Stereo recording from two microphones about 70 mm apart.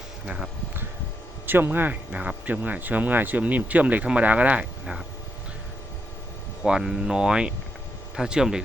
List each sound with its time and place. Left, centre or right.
1.5 s speech: right
6.6 s speech: centre